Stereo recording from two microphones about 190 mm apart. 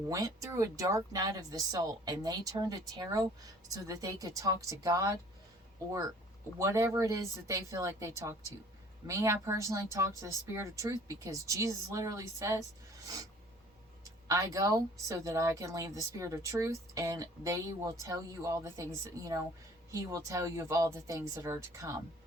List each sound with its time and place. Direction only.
0.1 s speech: 15° right (ahead or behind)
6.6 s speech: 15° right (ahead or behind)
14.0 s speech: 15° right (ahead or behind)